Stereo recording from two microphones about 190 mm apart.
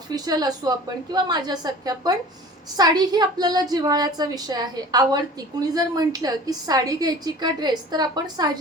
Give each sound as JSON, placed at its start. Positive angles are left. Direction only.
{"t": 0.1, "sound": "a woman's voice", "side_deg": -20}